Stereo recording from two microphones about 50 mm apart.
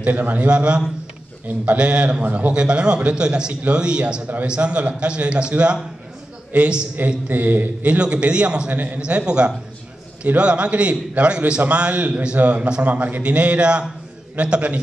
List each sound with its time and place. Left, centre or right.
0.0 s a man's voice: right
8.6 s a man's voice: right